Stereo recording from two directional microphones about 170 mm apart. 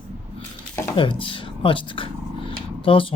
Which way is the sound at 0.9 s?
30° left (ahead or behind).